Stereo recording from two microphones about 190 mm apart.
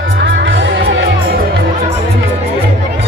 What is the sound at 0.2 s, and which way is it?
Music, 70° right (ahead or behind).